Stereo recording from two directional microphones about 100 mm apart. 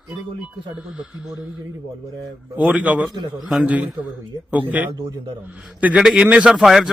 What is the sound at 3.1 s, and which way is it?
Speech, 45° right (ahead or behind).